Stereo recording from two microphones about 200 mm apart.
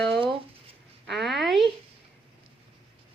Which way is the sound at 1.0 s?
Centre (ahead or behind).